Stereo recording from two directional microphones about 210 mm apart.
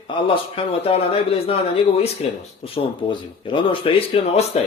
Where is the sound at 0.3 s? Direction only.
25° left (ahead or behind).